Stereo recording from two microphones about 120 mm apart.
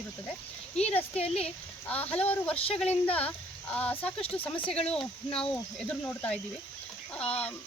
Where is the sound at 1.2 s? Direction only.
60° left (ahead or behind).